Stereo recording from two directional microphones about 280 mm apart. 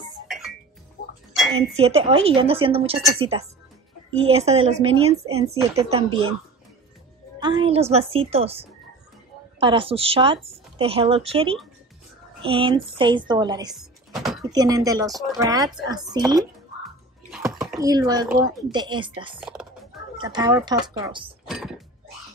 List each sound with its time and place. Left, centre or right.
0.3 s music: centre
1.3 s dishes: centre
1.8 s speech: right
7.3 s a woman's voice: centre
13.7 s a sound: centre
14.5 s a woman's voice: centre
15.0 s speech: centre
15.3 s a woman's voice: centre
17.5 s a sound: centre
17.7 s a woman's voice: centre
19.4 s typing: centre
20.2 s a woman's voice: centre
21.5 s a sound: centre